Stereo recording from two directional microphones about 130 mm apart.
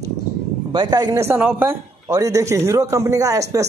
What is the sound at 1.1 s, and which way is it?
A man's voice, 20° right (ahead or behind).